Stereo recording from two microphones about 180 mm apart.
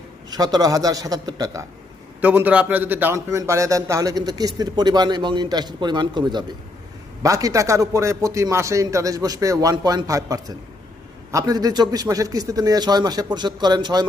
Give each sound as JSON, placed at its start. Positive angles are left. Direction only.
{"t": 0.3, "sound": "a man's voice", "side_deg": -20}
{"t": 2.2, "sound": "a man's voice", "side_deg": -10}